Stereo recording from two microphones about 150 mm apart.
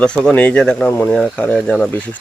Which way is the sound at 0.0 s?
5° left (ahead or behind).